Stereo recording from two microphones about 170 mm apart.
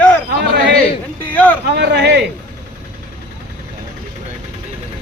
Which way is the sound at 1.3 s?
10° left (ahead or behind).